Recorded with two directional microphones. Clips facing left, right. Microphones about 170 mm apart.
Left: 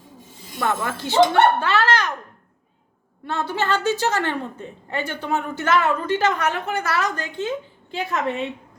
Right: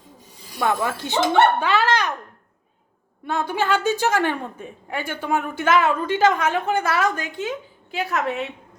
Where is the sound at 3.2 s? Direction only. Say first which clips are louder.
Right 1 dB; 15° right (ahead or behind).